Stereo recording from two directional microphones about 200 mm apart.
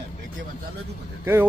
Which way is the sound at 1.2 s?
10° right (ahead or behind).